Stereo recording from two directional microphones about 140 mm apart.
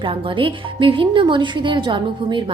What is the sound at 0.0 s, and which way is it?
A woman's voice, 40° right (ahead or behind).